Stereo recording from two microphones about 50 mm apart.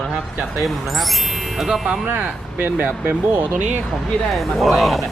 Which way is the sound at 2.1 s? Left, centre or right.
Right.